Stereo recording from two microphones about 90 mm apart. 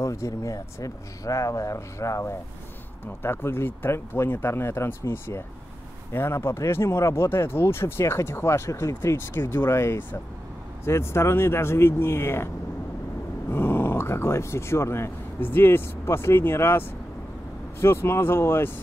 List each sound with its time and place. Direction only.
0.0 s speech: 35° left (ahead or behind)
13.5 s speech: 25° left (ahead or behind)